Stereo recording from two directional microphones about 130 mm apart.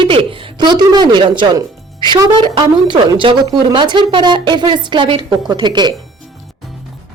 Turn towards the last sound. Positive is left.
turn(degrees=-35)  # may be behind; listen again after turning